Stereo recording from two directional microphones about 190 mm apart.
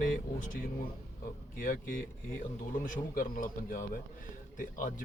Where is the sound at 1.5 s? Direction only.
45° left (ahead or behind).